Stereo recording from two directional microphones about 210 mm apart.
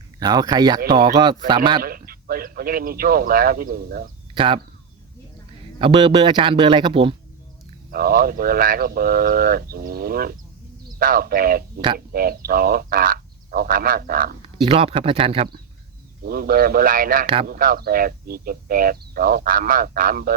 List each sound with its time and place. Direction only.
0.2 s a man's voice: 20° right (ahead or behind)
1.8 s speech: 45° right (ahead or behind)
4.4 s speech: 25° right (ahead or behind)
5.8 s a man's voice: 25° right (ahead or behind)
7.9 s speech: 45° right (ahead or behind)
14.6 s a man's voice: 25° right (ahead or behind)
16.2 s speech: 45° right (ahead or behind)